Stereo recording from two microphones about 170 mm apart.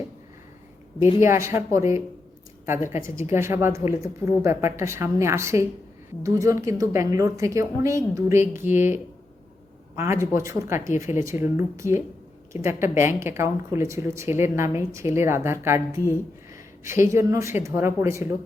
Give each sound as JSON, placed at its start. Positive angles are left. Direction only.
{"t": 1.2, "sound": "speech", "side_deg": -15}